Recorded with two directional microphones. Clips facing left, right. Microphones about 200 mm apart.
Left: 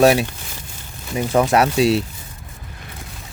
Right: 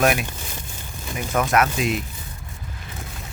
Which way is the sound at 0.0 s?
30° left (ahead or behind).